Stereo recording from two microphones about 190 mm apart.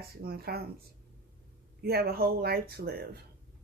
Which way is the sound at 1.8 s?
55° right (ahead or behind).